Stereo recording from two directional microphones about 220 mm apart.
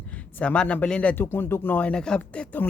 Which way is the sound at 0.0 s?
5° left (ahead or behind).